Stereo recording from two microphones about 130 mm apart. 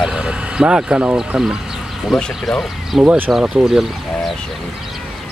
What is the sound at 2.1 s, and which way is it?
Speech, 5° left (ahead or behind).